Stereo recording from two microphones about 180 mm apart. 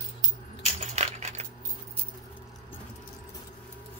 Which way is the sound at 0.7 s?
35° right (ahead or behind).